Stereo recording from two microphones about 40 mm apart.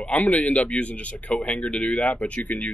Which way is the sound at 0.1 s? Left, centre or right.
Left.